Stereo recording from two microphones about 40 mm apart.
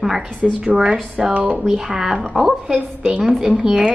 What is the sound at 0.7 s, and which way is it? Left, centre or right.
Speech, right.